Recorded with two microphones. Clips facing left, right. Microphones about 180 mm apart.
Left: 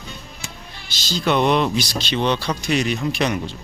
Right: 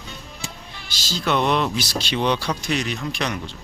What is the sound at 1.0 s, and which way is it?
Speech, 5° right (ahead or behind).